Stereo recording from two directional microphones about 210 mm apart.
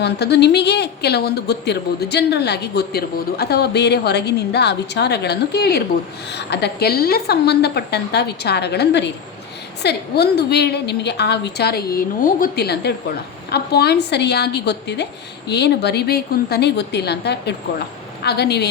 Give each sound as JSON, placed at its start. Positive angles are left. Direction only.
{"t": 0.0, "sound": "a woman's voice", "side_deg": 50}